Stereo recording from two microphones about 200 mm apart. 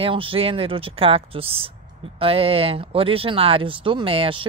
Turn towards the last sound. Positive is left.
turn(degrees=-25)  # may be behind; listen again after turning